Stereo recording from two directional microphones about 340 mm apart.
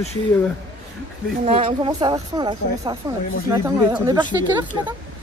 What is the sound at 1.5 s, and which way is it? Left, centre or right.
A woman's voice, centre.